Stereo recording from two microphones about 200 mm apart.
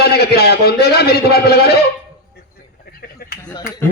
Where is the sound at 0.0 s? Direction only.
50° left (ahead or behind).